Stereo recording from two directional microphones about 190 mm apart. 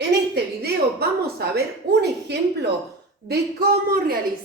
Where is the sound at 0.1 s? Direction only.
60° right (ahead or behind).